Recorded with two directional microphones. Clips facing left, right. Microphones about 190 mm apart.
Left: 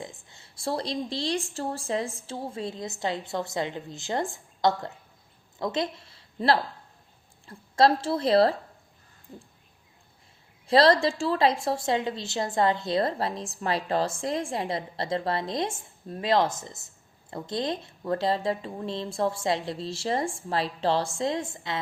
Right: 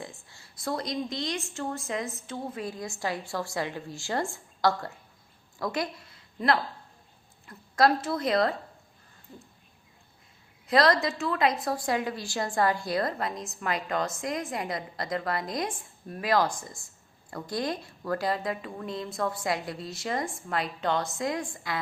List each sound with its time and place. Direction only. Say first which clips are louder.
0.0 s a woman's voice: left 2 dB; 20° left (ahead or behind)
10.7 s a woman's voice: left 3 dB; 30° left (ahead or behind)